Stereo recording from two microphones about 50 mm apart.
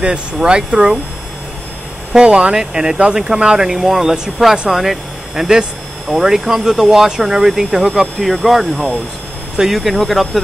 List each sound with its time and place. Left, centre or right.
0.0 s speech: centre
2.1 s speech: centre
8.7 s speech: left
9.8 s speech: centre